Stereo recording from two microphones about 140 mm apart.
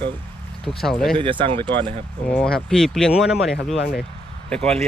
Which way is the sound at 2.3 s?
5° left (ahead or behind).